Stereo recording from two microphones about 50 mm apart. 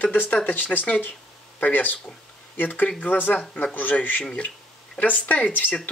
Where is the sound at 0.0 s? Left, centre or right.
Left.